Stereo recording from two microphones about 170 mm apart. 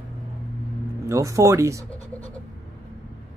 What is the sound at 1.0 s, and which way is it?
Speech, 20° right (ahead or behind).